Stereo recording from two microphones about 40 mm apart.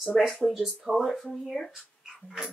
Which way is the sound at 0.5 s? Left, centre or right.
Centre.